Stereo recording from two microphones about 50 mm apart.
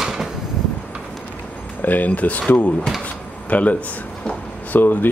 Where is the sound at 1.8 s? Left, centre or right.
Left.